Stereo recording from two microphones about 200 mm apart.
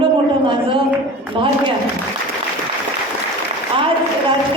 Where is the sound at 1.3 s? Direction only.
25° right (ahead or behind).